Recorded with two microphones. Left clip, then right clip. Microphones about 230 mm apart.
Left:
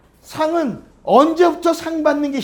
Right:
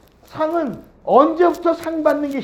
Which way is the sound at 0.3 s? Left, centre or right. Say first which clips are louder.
Left 2 dB; left.